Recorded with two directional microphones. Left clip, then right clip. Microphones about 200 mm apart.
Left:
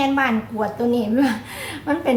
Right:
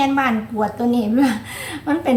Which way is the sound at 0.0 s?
5° right (ahead or behind).